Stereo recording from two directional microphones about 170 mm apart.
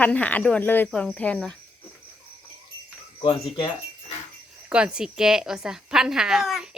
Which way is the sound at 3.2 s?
30° left (ahead or behind).